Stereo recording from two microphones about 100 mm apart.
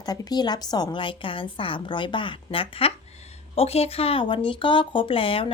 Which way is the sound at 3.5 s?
85° left.